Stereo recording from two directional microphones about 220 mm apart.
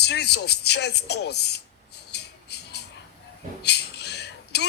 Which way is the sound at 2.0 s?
50° left (ahead or behind).